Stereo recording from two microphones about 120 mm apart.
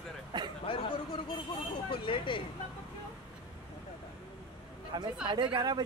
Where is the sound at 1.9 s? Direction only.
45° left (ahead or behind).